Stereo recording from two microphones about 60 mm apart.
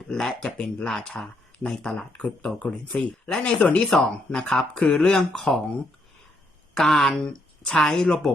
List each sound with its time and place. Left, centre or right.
0.1 s speech: centre
6.7 s speech: centre